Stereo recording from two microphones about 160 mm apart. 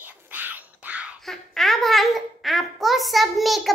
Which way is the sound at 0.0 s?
10° right (ahead or behind).